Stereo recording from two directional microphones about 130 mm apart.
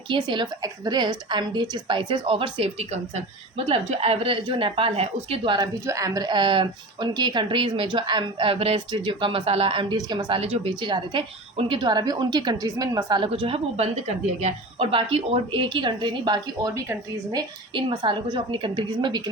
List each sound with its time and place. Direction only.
0.3 s a woman's voice: 35° right (ahead or behind)
5.8 s a woman's voice: 25° right (ahead or behind); by 8.8 s 50° right (ahead or behind)
8.9 s a woman's voice: 40° right (ahead or behind)
9.9 s a woman's voice: 35° right (ahead or behind)
16.7 s speech: 25° right (ahead or behind)
17.7 s a woman's voice: 40° right (ahead or behind)